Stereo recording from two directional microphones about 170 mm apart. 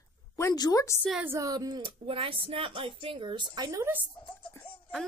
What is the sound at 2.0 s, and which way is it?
A woman's voice, 30° right (ahead or behind).